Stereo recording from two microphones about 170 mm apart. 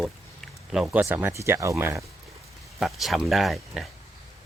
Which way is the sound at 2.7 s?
Centre (ahead or behind).